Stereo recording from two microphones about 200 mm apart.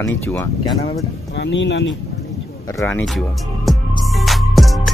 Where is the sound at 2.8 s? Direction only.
10° left (ahead or behind).